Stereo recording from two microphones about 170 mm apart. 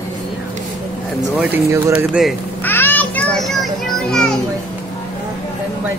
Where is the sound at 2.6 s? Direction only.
10° left (ahead or behind).